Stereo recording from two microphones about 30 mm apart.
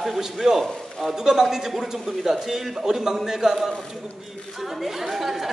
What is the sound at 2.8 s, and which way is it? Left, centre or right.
Speech, centre.